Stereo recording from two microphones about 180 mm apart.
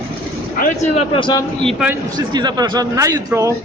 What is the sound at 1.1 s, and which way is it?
Speech, 25° left (ahead or behind).